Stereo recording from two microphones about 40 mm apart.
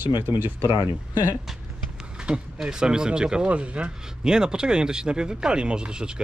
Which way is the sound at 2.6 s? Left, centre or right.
Centre.